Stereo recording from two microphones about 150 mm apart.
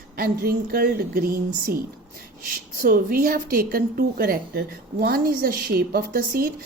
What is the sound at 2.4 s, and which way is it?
A woman's voice, 65° right (ahead or behind).